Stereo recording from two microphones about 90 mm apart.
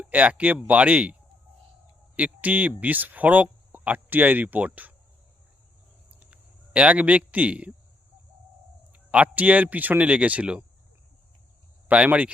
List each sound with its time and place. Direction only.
0.0 s speech: 15° right (ahead or behind)
2.1 s speech: 15° right (ahead or behind)
6.1 s a sound: 15° right (ahead or behind)
8.9 s speech: 15° right (ahead or behind)
11.9 s speech: 15° right (ahead or behind)